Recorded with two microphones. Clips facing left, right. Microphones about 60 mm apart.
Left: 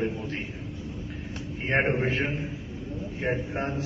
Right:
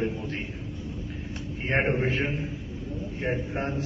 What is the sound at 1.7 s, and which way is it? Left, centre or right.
Speech, centre.